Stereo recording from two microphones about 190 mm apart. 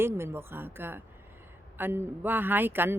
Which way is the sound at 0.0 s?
15° right (ahead or behind).